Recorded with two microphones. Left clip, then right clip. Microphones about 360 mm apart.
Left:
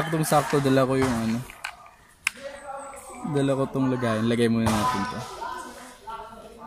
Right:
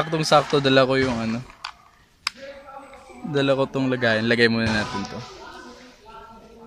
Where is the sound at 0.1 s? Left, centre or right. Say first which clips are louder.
Right 4 dB; right.